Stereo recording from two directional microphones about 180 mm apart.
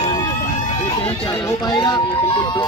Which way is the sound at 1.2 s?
25° left (ahead or behind).